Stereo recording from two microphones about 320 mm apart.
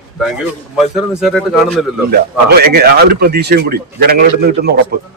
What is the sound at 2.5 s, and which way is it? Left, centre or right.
Speech, right.